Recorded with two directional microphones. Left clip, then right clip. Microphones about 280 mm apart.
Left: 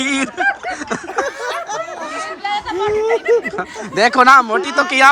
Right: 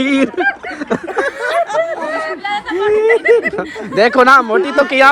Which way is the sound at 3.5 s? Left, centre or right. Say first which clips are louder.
Right 4 dB; centre.